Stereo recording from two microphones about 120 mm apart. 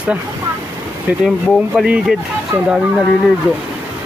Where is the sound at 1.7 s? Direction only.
5° right (ahead or behind).